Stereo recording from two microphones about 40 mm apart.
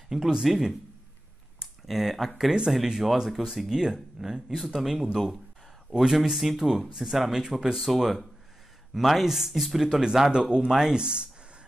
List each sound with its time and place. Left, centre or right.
0.1 s speech: centre
1.9 s speech: centre
10.3 s speech: right